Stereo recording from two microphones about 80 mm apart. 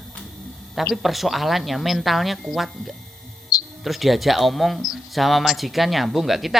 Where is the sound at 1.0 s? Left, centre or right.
Centre.